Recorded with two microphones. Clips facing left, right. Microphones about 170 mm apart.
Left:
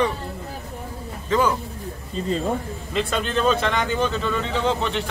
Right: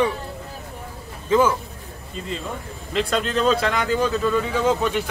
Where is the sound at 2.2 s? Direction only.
40° left (ahead or behind).